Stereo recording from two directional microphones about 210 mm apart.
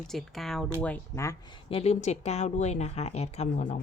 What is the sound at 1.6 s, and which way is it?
Speech, 30° left (ahead or behind).